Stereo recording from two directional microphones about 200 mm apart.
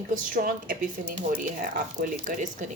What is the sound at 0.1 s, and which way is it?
Speech, 45° right (ahead or behind).